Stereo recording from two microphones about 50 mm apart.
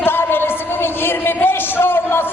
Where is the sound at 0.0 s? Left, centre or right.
Left.